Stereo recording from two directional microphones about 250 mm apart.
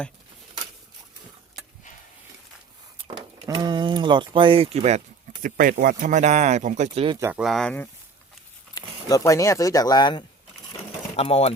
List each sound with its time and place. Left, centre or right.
3.3 s speech: centre
7.2 s speech: centre
8.7 s speech: centre